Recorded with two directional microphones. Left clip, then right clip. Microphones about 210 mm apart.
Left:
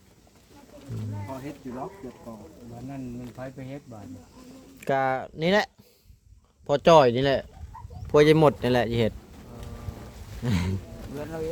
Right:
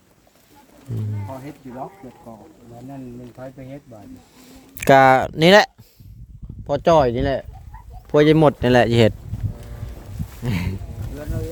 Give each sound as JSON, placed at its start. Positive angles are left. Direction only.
{"t": 1.8, "sound": "speech", "side_deg": -20}
{"t": 4.8, "sound": "speech", "side_deg": -55}
{"t": 6.7, "sound": "speech", "side_deg": -15}
{"t": 10.4, "sound": "a sound", "side_deg": -20}